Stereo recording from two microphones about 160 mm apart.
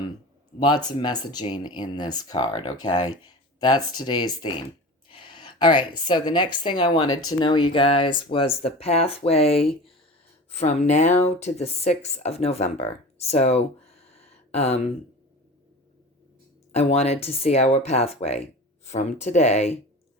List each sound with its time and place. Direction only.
0.9 s a woman's voice: 25° left (ahead or behind)
16.7 s a woman's voice: 40° left (ahead or behind)